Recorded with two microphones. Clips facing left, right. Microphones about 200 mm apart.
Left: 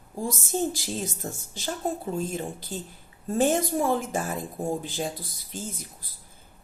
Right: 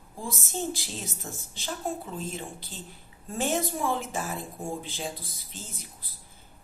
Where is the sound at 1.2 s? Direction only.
40° left (ahead or behind).